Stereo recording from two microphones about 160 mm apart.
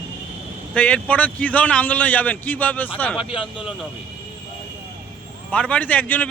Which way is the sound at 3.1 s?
35° left (ahead or behind).